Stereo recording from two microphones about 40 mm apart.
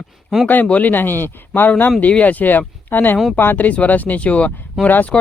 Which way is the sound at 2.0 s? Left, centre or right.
Left.